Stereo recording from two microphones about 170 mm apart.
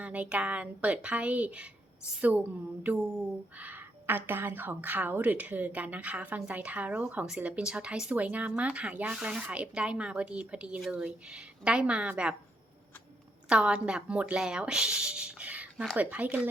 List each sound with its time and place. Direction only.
0.0 s a woman's voice: 10° right (ahead or behind)
2.8 s a woman's voice: 10° right (ahead or behind)
13.5 s speech: 5° right (ahead or behind)